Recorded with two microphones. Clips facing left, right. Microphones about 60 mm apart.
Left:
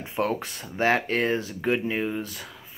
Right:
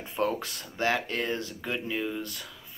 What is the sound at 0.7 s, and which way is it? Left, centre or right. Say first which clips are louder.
Speech: left 5 dB; left.